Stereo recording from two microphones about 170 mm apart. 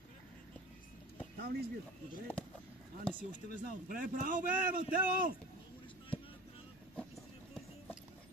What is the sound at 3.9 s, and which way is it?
A man's voice, 55° right (ahead or behind).